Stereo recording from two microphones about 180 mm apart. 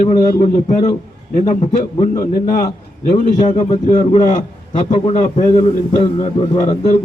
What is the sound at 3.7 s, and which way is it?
A man's voice, 40° left (ahead or behind).